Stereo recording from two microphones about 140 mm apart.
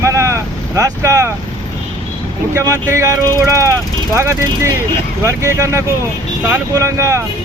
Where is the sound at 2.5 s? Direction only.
25° right (ahead or behind).